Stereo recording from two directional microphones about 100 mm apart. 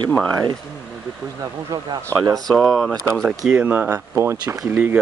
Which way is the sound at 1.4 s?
35° right (ahead or behind).